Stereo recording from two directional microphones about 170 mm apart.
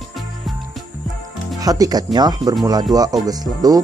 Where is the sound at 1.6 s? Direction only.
20° right (ahead or behind).